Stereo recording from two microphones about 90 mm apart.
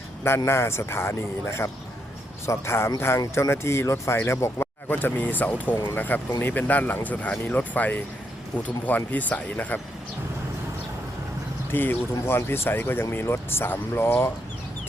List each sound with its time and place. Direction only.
0.3 s speech: 25° left (ahead or behind)
11.7 s speech: 25° left (ahead or behind)